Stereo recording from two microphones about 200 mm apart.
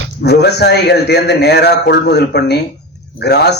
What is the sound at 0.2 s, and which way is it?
A man's voice, 55° left (ahead or behind).